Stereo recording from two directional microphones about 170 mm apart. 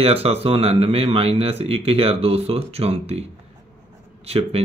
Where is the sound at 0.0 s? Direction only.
35° right (ahead or behind).